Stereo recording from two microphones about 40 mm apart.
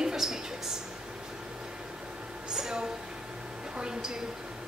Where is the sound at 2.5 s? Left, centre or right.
Centre.